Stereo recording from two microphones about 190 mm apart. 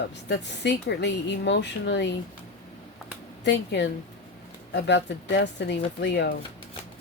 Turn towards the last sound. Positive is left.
turn(degrees=65)  # may be behind; listen again after turning